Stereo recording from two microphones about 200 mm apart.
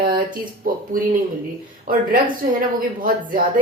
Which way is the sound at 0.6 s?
45° right (ahead or behind).